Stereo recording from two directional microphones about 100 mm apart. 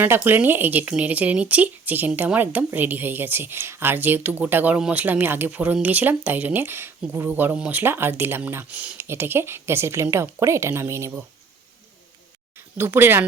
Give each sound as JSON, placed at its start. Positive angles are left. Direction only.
{"t": 0.0, "sound": "speech", "side_deg": -20}
{"t": 12.5, "sound": "speech", "side_deg": -25}